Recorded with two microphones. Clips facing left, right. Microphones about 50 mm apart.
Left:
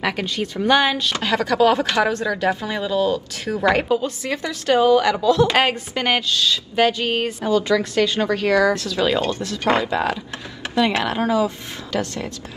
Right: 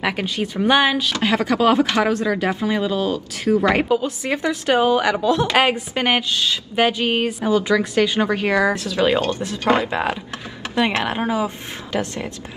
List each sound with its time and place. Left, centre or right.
0.0 s speech: centre
1.2 s a woman's voice: right
5.5 s a woman's voice: centre; by 12.3 s right